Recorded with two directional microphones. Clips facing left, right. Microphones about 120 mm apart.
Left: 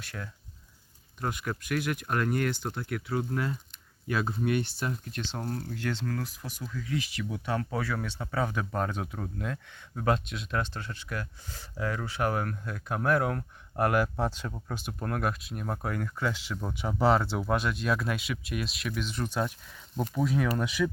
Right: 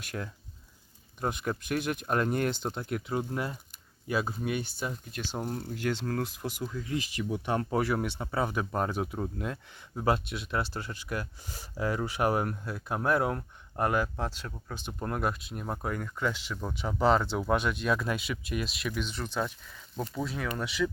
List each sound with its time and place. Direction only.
1.2 s speech: 20° right (ahead or behind)
7.6 s speech: 40° right (ahead or behind)
7.9 s speech: 20° right (ahead or behind)
10.1 s speech: 5° right (ahead or behind)
14.9 s speech: 5° right (ahead or behind)